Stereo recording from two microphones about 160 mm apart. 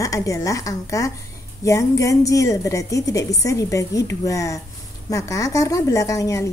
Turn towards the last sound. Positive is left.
turn(degrees=20)  # may be behind; listen again after turning